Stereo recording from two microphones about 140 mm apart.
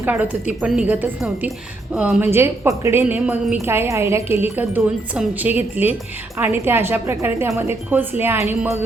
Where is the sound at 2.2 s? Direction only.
15° right (ahead or behind).